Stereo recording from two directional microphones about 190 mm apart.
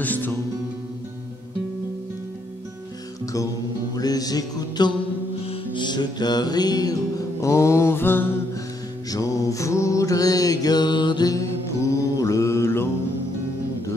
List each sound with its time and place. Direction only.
0.0 s music: 10° left (ahead or behind)
3.9 s music: 20° left (ahead or behind)
9.1 s mantra: 15° left (ahead or behind)